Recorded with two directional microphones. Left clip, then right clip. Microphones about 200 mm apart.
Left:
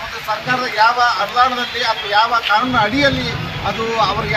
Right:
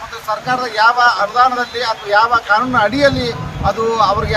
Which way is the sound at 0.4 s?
25° right (ahead or behind).